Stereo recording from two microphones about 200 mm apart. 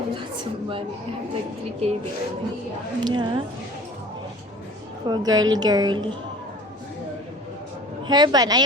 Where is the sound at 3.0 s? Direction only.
20° right (ahead or behind).